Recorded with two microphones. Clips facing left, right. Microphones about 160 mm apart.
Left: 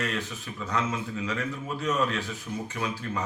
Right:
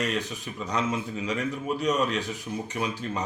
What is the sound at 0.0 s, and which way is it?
A man's voice, 15° right (ahead or behind).